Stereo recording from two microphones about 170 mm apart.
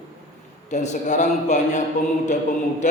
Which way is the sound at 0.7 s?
45° left (ahead or behind).